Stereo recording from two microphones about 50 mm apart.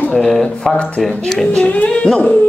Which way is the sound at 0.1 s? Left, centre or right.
Centre.